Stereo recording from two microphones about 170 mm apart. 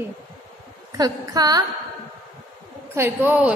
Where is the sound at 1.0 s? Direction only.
20° right (ahead or behind).